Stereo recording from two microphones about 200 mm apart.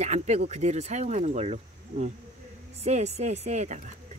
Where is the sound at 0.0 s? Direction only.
35° right (ahead or behind).